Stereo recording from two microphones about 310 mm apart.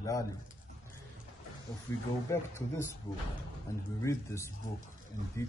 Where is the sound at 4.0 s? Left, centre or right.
Centre.